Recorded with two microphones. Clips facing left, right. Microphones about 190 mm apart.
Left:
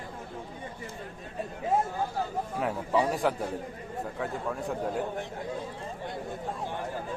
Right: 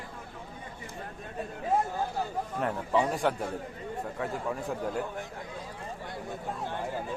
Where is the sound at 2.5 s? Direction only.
5° left (ahead or behind).